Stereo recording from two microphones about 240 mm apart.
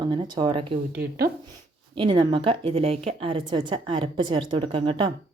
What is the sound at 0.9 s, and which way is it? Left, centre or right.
Speech, right.